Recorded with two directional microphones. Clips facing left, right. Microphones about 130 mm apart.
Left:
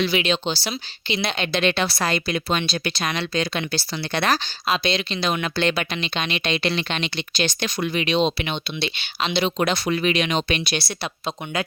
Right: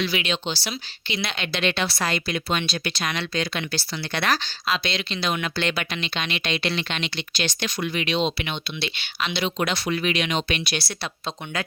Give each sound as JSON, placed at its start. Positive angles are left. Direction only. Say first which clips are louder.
{"t": 0.0, "sound": "speech", "louder": "left 4 dB", "side_deg": 30}
{"t": 1.4, "sound": "speech", "louder": "left 3 dB", "side_deg": 40}
{"t": 4.4, "sound": "speech", "louder": "left 3 dB", "side_deg": 20}
{"t": 10.7, "sound": "speech", "louder": "left 3 dB", "side_deg": 25}